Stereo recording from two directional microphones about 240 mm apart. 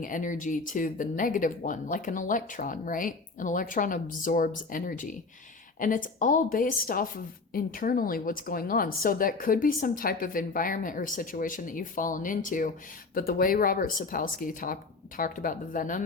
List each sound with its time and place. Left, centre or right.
0.0 s speech: left